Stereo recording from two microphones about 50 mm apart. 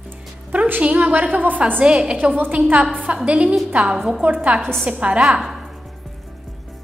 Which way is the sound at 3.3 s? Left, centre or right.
Right.